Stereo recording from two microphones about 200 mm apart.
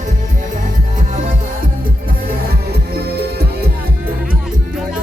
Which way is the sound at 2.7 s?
55° right (ahead or behind).